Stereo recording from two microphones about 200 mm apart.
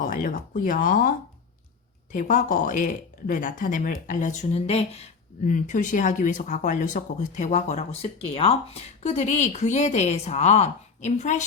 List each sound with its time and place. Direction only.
0.0 s speech: 40° left (ahead or behind)
2.1 s speech: 40° left (ahead or behind)